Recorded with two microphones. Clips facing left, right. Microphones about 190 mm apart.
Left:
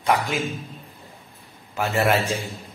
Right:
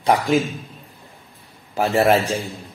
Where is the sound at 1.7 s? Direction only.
35° right (ahead or behind).